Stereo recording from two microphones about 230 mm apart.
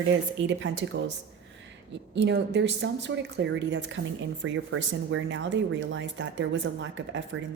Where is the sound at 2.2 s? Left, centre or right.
Right.